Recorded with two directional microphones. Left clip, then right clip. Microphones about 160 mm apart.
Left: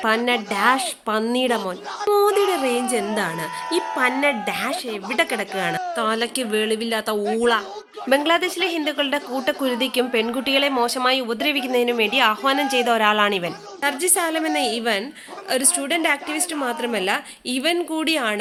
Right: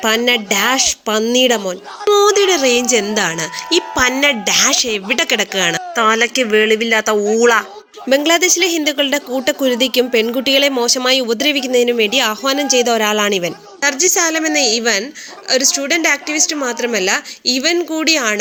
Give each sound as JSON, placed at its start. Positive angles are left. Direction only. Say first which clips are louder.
{"t": 0.0, "sound": "speech", "louder": "right 6 dB", "side_deg": -35}
{"t": 2.2, "sound": "speech", "louder": "right 7 dB", "side_deg": -20}
{"t": 8.1, "sound": "speech", "louder": "right 6 dB", "side_deg": -40}
{"t": 13.8, "sound": "speech", "louder": "right 7 dB", "side_deg": -15}